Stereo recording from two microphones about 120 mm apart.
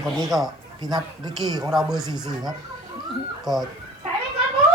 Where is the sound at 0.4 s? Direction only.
35° right (ahead or behind).